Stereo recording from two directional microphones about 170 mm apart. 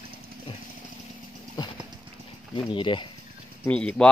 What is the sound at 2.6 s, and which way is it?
Speech, 30° left (ahead or behind).